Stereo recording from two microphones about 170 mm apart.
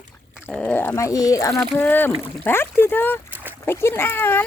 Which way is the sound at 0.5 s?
10° left (ahead or behind).